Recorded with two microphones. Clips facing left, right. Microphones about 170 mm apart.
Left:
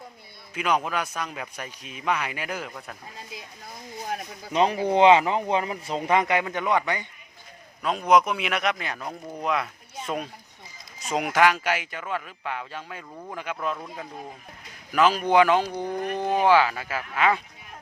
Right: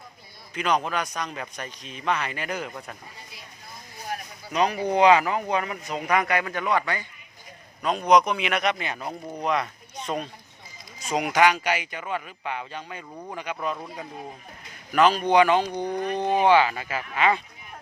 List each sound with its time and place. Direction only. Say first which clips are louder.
0.5 s a man's voice: even; 5° left (ahead or behind)
4.5 s speech: left 2 dB; 30° left (ahead or behind)
7.8 s a man's voice: right 1 dB; centre (ahead or behind)
14.9 s a man's voice: right 1 dB; 5° left (ahead or behind)